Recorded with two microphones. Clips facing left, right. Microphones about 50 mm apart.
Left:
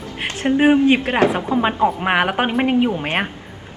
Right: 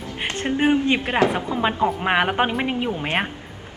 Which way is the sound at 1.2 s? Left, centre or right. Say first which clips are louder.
Left 2 dB; left.